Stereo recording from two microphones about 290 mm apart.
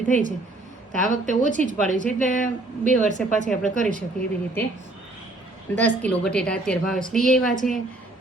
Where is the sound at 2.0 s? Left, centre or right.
Left.